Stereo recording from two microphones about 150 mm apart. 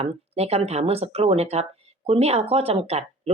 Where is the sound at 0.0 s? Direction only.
45° right (ahead or behind).